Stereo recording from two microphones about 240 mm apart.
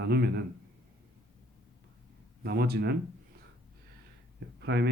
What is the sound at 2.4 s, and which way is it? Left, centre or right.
Speech, right.